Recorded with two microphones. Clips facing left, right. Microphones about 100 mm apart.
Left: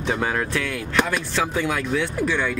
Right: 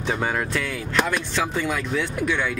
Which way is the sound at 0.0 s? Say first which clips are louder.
Left 1 dB; centre (ahead or behind).